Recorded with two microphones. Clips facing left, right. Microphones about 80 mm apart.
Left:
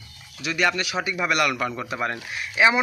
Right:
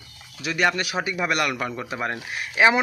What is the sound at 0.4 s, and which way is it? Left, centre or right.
Speech, right.